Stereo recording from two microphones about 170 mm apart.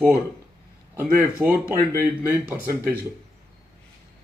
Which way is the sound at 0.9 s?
10° right (ahead or behind).